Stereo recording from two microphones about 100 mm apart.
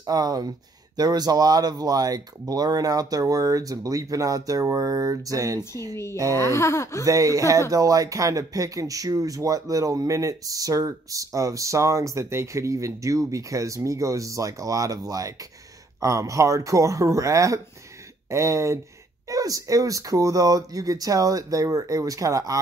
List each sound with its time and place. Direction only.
0.0 s speech: 40° right (ahead or behind)
6.3 s speech: 30° left (ahead or behind)
7.1 s speech: 35° right (ahead or behind)